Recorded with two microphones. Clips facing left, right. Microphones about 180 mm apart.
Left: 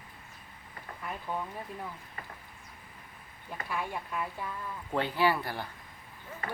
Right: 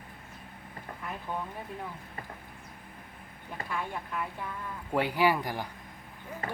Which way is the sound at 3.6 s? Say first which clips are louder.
Even; 5° left (ahead or behind).